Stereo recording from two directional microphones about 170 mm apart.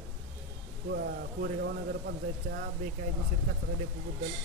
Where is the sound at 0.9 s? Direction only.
65° right (ahead or behind).